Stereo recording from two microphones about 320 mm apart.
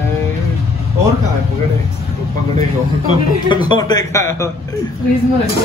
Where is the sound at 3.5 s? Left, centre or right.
Centre.